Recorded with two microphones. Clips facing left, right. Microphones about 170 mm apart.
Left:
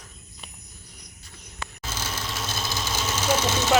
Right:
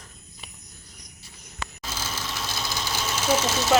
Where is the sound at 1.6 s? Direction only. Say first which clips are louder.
Right 1 dB; 90° right.